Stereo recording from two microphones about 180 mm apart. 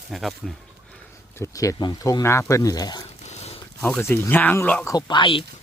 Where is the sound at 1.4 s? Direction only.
20° left (ahead or behind).